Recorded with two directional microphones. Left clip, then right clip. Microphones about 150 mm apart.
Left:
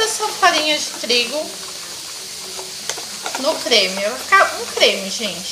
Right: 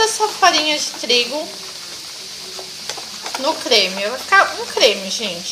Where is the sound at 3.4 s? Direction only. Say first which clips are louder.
Even; 35° right (ahead or behind).